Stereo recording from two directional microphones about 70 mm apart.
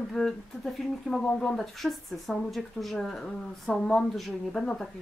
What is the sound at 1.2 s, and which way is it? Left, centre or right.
Speech, centre.